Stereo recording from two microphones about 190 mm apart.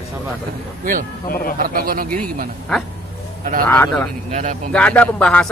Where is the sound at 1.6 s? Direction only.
50° right (ahead or behind).